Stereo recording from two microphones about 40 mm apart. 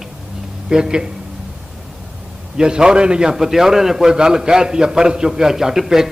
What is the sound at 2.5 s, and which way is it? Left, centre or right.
Speech, centre.